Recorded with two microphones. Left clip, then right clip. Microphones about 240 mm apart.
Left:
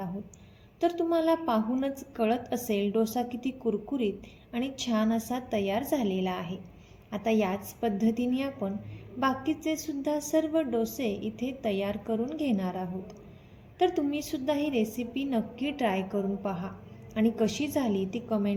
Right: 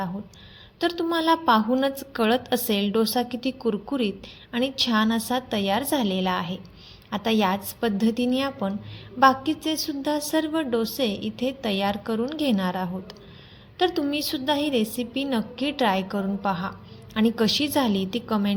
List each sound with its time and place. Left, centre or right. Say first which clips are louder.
0.8 s a woman's voice: right 2 dB; right